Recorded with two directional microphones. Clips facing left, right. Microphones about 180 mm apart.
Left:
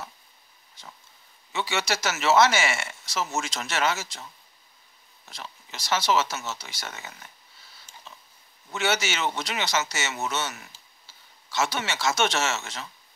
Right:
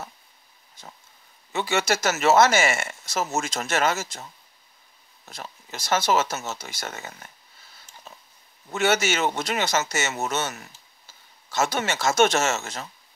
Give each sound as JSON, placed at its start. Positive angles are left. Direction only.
{"t": 1.5, "sound": "speech", "side_deg": -50}
{"t": 5.2, "sound": "speech", "side_deg": -45}
{"t": 8.1, "sound": "pig", "side_deg": -45}
{"t": 8.7, "sound": "speech", "side_deg": -50}